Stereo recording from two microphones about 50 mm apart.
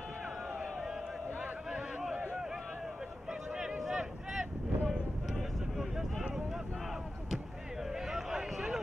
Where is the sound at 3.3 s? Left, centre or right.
Centre.